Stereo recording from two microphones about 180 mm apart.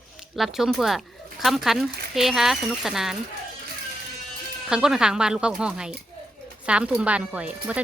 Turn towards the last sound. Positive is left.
turn(degrees=-5)  # may be behind; listen again after turning